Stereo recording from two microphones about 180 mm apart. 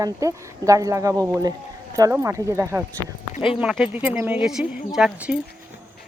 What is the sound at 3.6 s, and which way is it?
Speech, 5° right (ahead or behind).